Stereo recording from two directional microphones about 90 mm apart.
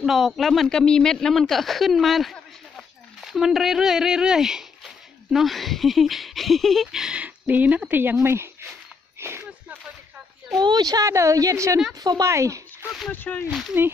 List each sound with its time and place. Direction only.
0.0 s speech: centre (ahead or behind); by 8.6 s 30° right (ahead or behind)
9.2 s a sound: 30° right (ahead or behind)
10.6 s a woman's voice: 50° right (ahead or behind); by 12.6 s 35° right (ahead or behind)
13.1 s speech: 20° left (ahead or behind)
13.5 s speech: centre (ahead or behind)